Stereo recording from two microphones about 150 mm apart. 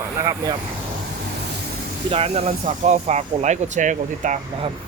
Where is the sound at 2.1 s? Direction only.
45° right (ahead or behind).